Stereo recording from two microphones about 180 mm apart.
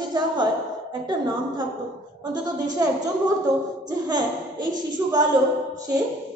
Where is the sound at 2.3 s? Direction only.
20° right (ahead or behind).